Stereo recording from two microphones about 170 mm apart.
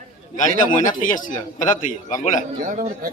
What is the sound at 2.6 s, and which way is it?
Speech, 50° right (ahead or behind).